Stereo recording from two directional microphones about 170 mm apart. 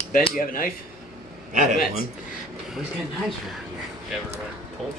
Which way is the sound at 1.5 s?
50° right (ahead or behind).